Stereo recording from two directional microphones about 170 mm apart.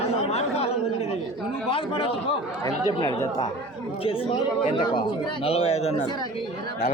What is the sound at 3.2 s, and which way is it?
Speech, 20° left (ahead or behind).